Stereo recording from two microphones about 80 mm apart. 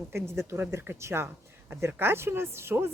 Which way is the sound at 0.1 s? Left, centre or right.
Right.